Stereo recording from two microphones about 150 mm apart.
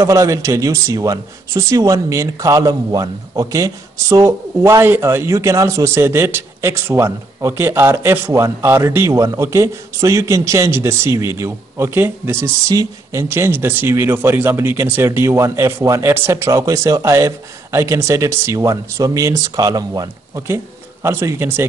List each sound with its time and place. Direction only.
0.0 s speech: 20° right (ahead or behind)